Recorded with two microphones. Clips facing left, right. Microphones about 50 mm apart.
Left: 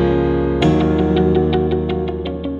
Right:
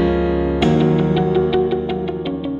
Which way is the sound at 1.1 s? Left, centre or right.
Centre.